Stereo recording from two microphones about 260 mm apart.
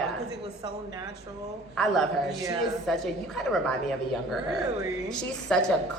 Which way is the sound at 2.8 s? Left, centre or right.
Centre.